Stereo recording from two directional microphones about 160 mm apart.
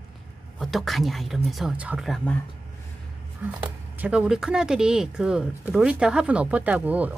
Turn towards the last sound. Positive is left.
turn(degrees=-10)  # may be behind; listen again after turning